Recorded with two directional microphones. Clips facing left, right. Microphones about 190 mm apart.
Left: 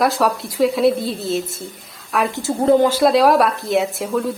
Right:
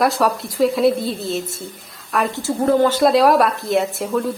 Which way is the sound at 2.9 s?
5° left (ahead or behind).